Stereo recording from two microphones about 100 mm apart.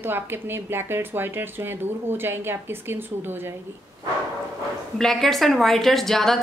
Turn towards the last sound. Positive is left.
turn(degrees=5)  # may be behind; listen again after turning